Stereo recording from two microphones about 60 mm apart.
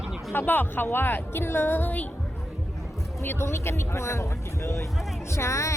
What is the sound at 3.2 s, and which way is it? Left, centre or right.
Speech, left.